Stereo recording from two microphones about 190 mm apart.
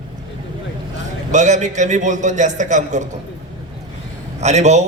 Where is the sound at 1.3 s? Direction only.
40° right (ahead or behind).